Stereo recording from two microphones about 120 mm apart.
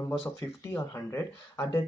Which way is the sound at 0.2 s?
20° left (ahead or behind).